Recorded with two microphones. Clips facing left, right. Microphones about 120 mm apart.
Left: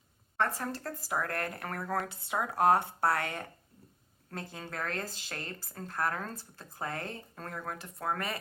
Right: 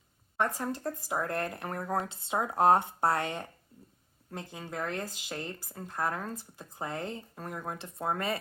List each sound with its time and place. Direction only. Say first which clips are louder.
0.3 s speech: right 1 dB; 15° right (ahead or behind)